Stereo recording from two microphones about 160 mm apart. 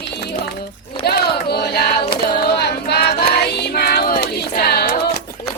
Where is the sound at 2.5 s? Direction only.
90° left.